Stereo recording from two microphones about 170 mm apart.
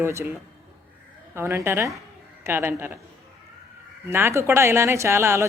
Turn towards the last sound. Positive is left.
turn(degrees=-15)  # may be behind; listen again after turning